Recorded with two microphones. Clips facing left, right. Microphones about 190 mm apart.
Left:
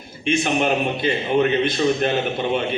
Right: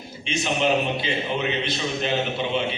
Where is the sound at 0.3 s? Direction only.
55° left (ahead or behind).